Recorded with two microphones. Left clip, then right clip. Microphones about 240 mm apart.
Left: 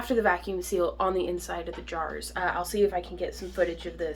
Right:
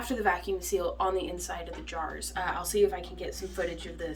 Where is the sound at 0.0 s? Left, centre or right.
Centre.